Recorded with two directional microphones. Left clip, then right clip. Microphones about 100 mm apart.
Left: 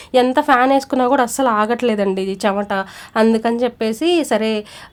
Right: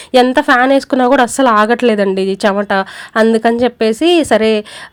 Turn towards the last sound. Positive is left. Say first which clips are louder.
# right 6 dB
turn(degrees=-35)  # may be behind; listen again after turning